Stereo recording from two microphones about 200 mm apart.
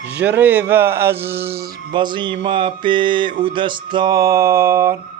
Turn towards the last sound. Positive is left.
turn(degrees=-10)  # may be behind; listen again after turning